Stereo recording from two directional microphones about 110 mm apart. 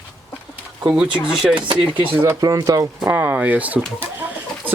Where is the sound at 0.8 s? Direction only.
10° right (ahead or behind).